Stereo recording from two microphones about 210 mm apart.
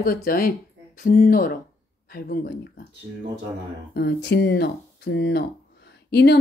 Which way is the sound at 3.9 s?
55° left (ahead or behind).